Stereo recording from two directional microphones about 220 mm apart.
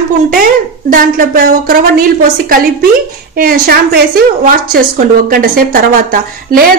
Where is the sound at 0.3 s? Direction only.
40° right (ahead or behind).